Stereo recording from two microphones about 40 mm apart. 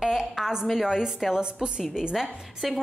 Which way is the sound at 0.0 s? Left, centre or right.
Centre.